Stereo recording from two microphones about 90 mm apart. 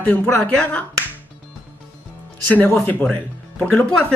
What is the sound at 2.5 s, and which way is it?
Speech, 20° left (ahead or behind).